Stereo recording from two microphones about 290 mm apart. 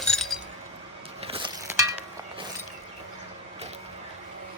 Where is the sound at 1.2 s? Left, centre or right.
Centre.